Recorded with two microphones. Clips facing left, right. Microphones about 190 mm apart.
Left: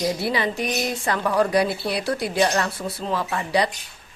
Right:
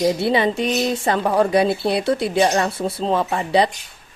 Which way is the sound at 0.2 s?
25° right (ahead or behind).